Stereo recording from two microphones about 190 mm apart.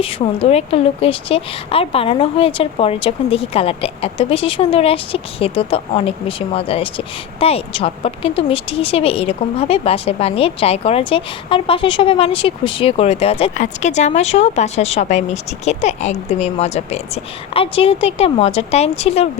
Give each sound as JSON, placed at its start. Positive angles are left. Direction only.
{"t": 0.0, "sound": "a woman's voice", "side_deg": 30}